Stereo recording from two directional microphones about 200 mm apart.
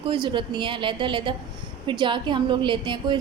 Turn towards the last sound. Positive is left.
turn(degrees=-25)  # may be behind; listen again after turning